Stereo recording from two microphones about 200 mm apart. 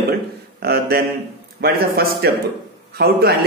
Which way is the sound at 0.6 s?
50° right (ahead or behind).